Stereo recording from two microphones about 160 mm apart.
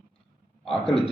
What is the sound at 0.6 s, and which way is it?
Speech, centre (ahead or behind).